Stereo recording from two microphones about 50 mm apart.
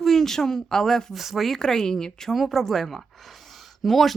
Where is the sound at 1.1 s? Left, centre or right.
Centre.